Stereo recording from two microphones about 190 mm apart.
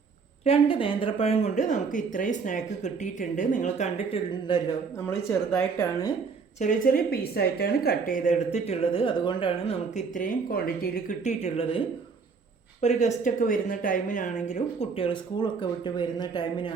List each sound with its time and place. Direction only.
0.4 s speech: 30° left (ahead or behind)
5.0 s a woman's voice: 15° left (ahead or behind)
6.6 s speech: 45° left (ahead or behind)
10.2 s speech: 50° left (ahead or behind); by 11.8 s 30° left (ahead or behind)
12.8 s speech: 35° left (ahead or behind)